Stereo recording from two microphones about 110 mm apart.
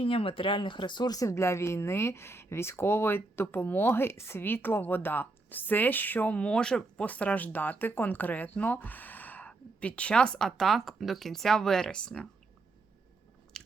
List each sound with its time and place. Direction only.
0.0 s speech: 55° left (ahead or behind); by 12.3 s 10° left (ahead or behind)
13.5 s biting: 5° left (ahead or behind)